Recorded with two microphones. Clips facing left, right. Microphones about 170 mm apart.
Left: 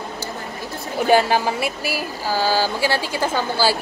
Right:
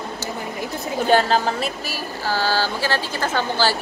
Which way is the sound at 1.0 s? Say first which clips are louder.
Left 1 dB; 10° left (ahead or behind).